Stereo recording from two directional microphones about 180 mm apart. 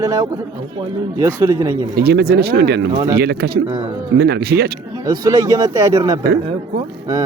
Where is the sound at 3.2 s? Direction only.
60° right (ahead or behind).